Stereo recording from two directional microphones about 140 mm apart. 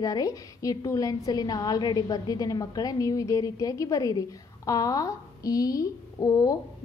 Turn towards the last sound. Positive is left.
turn(degrees=25)  # may be behind; listen again after turning